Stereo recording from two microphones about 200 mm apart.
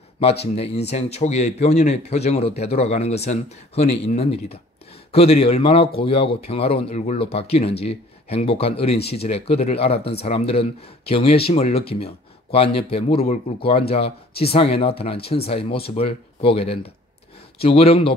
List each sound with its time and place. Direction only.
0.2 s speech: 30° left (ahead or behind)